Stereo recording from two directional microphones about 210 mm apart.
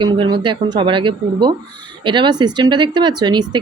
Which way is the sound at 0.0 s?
20° right (ahead or behind).